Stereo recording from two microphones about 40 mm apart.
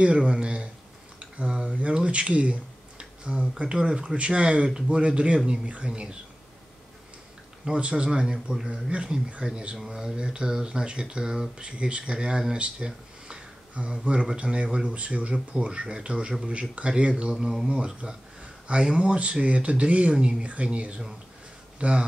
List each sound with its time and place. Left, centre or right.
0.0 s speech: right
7.6 s speech: right
8.6 s speech: right